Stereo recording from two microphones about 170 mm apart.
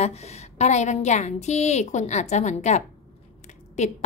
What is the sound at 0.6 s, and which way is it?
A woman's voice, 45° left (ahead or behind).